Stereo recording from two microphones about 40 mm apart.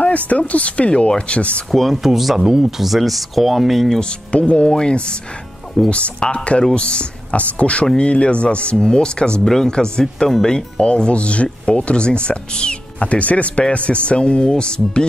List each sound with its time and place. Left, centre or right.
0.3 s speech: left
1.7 s speech: centre
2.4 s speech: centre
2.8 s speech: centre
4.0 s speech: left